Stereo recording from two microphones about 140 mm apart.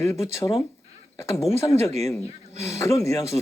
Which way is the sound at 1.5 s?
20° left (ahead or behind).